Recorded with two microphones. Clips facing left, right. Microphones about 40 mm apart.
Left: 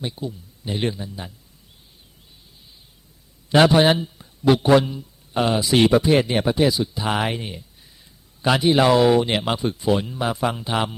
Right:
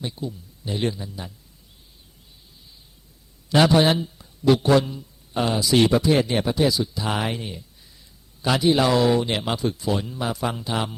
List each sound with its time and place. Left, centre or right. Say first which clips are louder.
0.0 s speech: left 2 dB; centre
3.5 s a man's voice: left 2 dB; centre
9.6 s a man's voice: left 3 dB; left